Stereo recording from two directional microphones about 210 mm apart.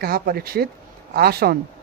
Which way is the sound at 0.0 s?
45° right (ahead or behind).